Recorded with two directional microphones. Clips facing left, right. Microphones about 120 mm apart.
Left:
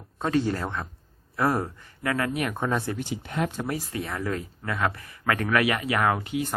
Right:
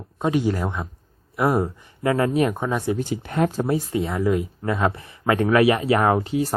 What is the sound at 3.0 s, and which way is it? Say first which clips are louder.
Speech: right 6 dB; 50° right (ahead or behind).